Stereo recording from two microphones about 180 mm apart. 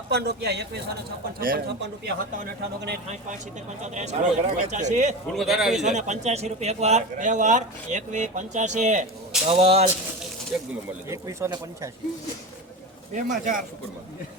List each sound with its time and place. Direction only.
0.1 s speech: 65° right (ahead or behind)
1.4 s speech: 55° right (ahead or behind)
3.8 s speech: 40° right (ahead or behind)
5.3 s a man's voice: centre (ahead or behind)
5.8 s speech: 40° right (ahead or behind)
11.1 s speech: 15° right (ahead or behind)
13.1 s speech: 45° right (ahead or behind)